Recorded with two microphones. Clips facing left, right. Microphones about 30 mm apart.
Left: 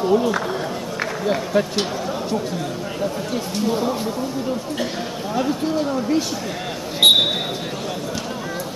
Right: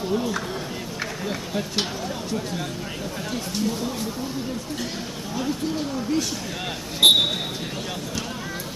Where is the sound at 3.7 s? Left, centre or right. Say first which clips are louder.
Left 7 dB; left.